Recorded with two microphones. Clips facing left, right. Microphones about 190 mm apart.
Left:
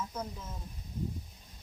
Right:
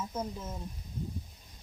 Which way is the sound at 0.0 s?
25° right (ahead or behind).